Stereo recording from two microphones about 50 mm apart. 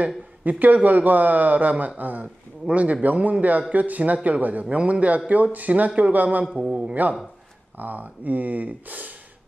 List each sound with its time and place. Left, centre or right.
0.0 s a man's voice: right